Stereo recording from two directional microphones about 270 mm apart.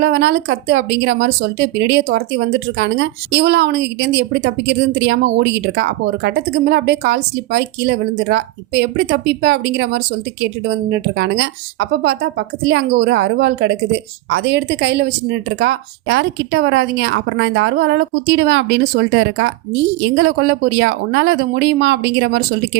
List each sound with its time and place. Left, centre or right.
0.0 s speech: right